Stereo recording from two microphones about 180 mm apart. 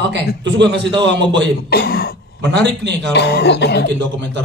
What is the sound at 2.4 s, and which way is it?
Speech, 75° right (ahead or behind).